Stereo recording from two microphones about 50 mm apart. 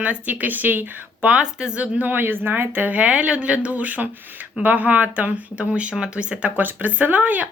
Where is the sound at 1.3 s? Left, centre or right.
Centre; by 3.0 s right.